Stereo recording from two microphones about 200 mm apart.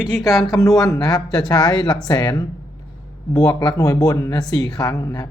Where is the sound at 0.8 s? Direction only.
20° left (ahead or behind).